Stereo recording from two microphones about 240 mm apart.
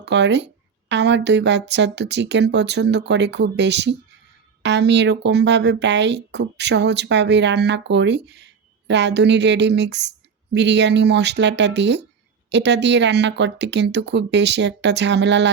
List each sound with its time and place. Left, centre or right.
0.0 s a woman's voice: right